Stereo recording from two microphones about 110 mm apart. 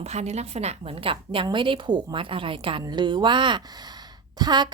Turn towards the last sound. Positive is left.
turn(degrees=-40)  # may be behind; listen again after turning